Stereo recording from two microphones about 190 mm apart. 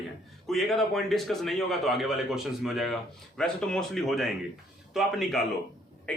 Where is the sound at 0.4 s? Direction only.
Centre (ahead or behind).